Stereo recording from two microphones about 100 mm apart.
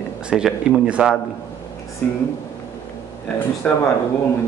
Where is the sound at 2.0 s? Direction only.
15° left (ahead or behind).